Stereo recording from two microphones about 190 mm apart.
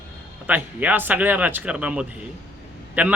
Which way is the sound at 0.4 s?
10° right (ahead or behind).